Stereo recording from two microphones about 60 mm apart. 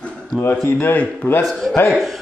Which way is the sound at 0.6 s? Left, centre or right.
Left.